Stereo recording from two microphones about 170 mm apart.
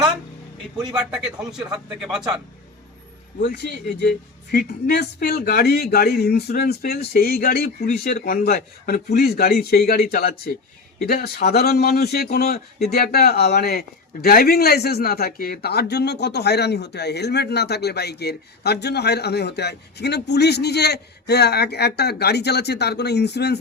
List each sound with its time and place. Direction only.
0.9 s a man's voice: 5° right (ahead or behind)
4.5 s a man's voice: 65° left (ahead or behind)